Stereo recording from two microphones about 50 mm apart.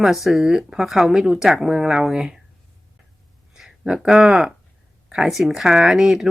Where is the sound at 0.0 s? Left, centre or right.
Centre.